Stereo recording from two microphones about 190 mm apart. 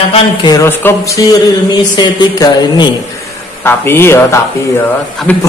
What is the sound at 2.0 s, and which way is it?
A man's voice, 20° left (ahead or behind).